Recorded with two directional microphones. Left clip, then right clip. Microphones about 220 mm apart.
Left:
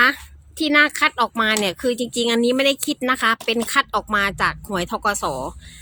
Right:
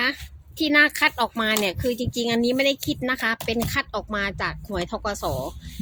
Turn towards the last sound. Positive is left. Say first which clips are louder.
# left 5 dB
turn(degrees=25)  # may be behind; listen again after turning